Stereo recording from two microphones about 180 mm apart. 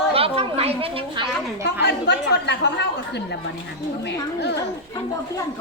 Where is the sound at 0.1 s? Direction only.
30° right (ahead or behind).